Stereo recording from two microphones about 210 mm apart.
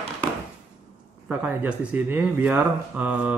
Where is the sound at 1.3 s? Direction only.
5° right (ahead or behind).